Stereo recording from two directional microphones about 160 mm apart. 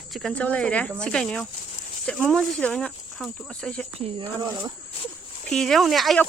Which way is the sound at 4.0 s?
40° right (ahead or behind).